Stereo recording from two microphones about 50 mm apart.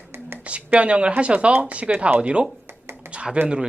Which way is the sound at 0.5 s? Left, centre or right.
Right.